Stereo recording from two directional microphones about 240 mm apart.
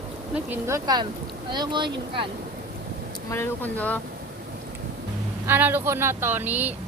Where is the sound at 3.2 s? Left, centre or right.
Centre.